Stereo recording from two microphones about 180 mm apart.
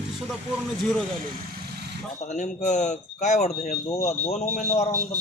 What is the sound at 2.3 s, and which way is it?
Speech, 40° left (ahead or behind).